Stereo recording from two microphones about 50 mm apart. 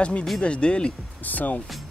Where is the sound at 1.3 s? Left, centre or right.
Left.